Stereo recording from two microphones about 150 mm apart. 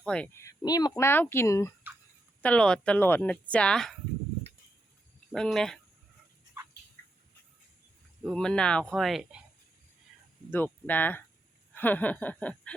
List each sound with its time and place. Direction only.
0.0 s speech: 5° left (ahead or behind)
2.4 s speech: 5° left (ahead or behind)
5.3 s speech: centre (ahead or behind)
8.2 s speech: centre (ahead or behind)
10.5 s speech: 10° left (ahead or behind)